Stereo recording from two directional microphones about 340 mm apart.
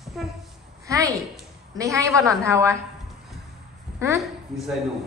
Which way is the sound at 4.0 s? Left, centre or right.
Centre.